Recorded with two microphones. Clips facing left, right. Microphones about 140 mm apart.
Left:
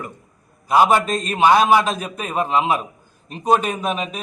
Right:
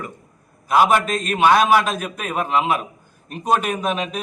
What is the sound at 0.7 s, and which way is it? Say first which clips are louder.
Speech: left 1 dB; 10° left (ahead or behind).